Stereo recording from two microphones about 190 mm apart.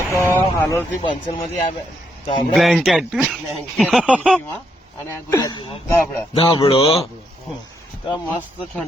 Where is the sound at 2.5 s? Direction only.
Centre (ahead or behind).